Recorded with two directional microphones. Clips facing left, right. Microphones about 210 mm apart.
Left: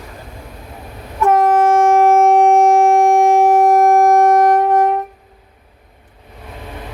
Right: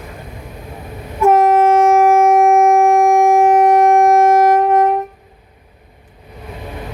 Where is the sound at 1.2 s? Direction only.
10° right (ahead or behind).